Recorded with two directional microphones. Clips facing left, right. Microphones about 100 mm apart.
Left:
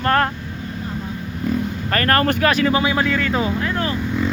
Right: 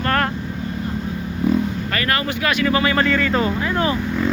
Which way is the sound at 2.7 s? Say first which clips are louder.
Even; 20° left (ahead or behind).